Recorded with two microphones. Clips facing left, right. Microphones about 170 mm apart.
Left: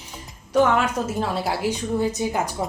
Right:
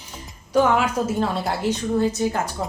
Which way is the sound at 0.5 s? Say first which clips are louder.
Even; centre (ahead or behind).